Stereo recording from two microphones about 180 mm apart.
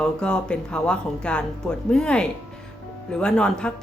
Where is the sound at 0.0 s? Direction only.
5° left (ahead or behind).